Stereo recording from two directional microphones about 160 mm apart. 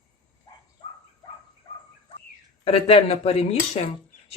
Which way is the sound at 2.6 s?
35° left (ahead or behind).